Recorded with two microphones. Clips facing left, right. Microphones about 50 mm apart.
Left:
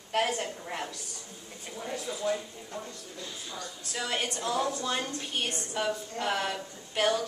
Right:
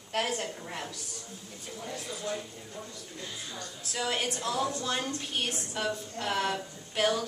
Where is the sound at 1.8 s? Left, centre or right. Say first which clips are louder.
Left 4 dB; centre.